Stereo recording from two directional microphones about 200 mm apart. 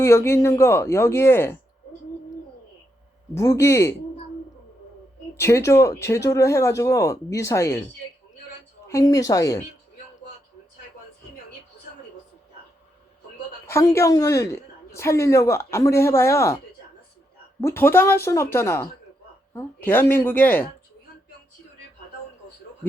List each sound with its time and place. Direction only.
0.0 s a woman's voice: 15° left (ahead or behind)
3.3 s a woman's voice: 15° left (ahead or behind)
5.4 s a woman's voice: 15° left (ahead or behind)
8.9 s a woman's voice: 15° left (ahead or behind)
13.7 s a woman's voice: 15° left (ahead or behind)
17.6 s a woman's voice: 15° left (ahead or behind)